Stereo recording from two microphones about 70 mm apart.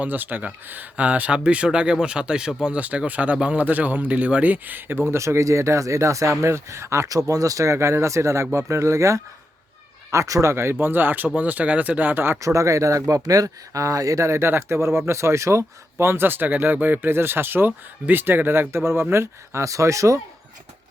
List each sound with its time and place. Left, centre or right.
0.0 s speech: right
10.5 s speech: right
12.4 s speech: right